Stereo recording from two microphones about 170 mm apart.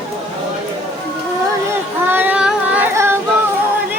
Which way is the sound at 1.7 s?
10° right (ahead or behind).